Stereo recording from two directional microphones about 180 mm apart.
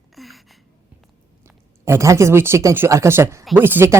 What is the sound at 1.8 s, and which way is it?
Speech, 15° right (ahead or behind).